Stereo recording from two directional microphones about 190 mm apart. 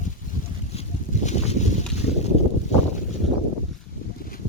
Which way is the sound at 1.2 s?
35° left (ahead or behind).